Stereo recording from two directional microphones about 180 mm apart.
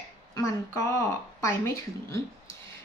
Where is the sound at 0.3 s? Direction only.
20° left (ahead or behind).